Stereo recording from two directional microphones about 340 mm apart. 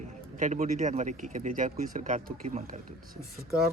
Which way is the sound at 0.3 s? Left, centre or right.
Right.